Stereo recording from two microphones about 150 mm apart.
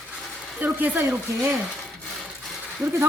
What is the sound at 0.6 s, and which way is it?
Speech, 10° right (ahead or behind).